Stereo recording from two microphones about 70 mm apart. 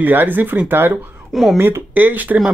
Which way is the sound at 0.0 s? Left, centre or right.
Right.